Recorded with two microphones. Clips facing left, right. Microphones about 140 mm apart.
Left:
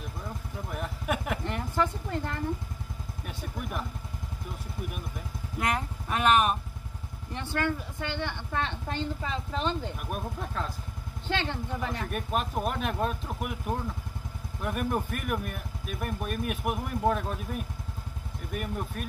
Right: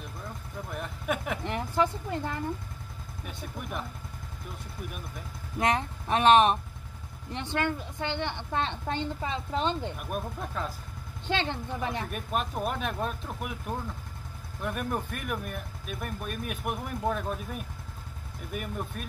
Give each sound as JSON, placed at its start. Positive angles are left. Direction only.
{"t": 0.7, "sound": "a sound", "side_deg": 0}
{"t": 1.4, "sound": "a sound", "side_deg": -15}
{"t": 3.3, "sound": "speech", "side_deg": 0}
{"t": 5.6, "sound": "a woman's voice", "side_deg": -25}
{"t": 9.9, "sound": "speech", "side_deg": 0}
{"t": 11.2, "sound": "speech", "side_deg": -20}
{"t": 12.1, "sound": "speech", "side_deg": 0}